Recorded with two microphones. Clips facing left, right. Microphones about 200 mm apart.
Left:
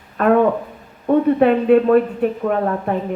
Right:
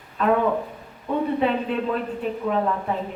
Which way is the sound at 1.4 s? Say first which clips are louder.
Left 10 dB; 60° left (ahead or behind).